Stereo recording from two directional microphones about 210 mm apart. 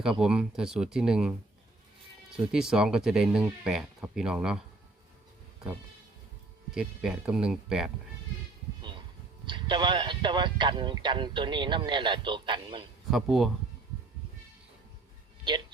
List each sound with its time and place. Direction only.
0.2 s speech: 5° right (ahead or behind)
6.7 s speech: 5° right (ahead or behind)
8.8 s music: 20° right (ahead or behind)
9.5 s speech: 20° right (ahead or behind)
13.1 s speech: centre (ahead or behind)